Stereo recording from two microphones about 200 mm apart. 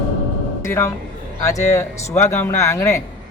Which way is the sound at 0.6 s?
15° left (ahead or behind).